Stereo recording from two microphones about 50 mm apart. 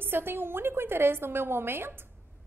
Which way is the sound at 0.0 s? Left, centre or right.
Right.